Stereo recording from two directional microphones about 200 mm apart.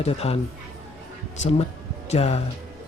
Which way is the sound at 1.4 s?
30° left (ahead or behind).